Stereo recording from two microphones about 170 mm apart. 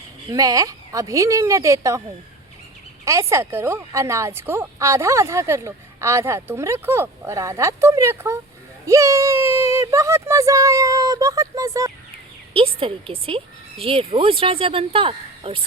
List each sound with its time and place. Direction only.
0.3 s a woman's voice: 20° right (ahead or behind)
3.0 s a woman's voice: 20° right (ahead or behind)
12.5 s a woman's voice: 30° right (ahead or behind)